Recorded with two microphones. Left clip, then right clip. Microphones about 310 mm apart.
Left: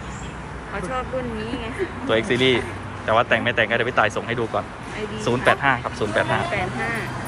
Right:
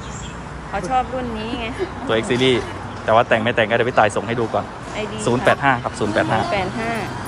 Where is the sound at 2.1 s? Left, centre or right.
Centre.